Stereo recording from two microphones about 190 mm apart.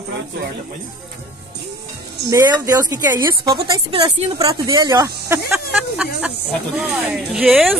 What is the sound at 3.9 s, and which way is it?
Speech, 30° right (ahead or behind).